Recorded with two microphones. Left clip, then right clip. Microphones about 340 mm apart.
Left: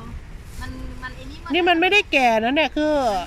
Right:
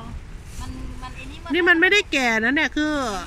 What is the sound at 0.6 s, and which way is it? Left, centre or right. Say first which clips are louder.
Speech: left 3 dB; centre.